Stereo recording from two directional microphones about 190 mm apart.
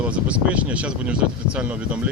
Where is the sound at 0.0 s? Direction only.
5° right (ahead or behind).